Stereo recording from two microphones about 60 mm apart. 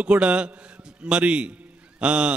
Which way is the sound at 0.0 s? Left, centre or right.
Right.